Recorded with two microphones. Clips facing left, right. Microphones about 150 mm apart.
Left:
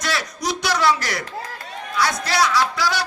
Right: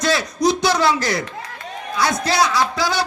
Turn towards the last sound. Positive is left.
turn(degrees=-25)  # may be behind; listen again after turning